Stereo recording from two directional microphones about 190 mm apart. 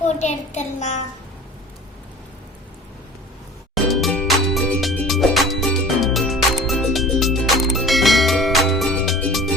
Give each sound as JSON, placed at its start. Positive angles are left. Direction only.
{"t": 0.0, "sound": "a child's voice", "side_deg": 40}
{"t": 3.8, "sound": "music", "side_deg": 0}